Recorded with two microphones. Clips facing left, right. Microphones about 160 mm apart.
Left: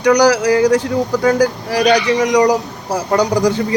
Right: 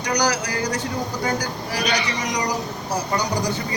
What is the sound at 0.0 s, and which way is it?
Speech, 90° left.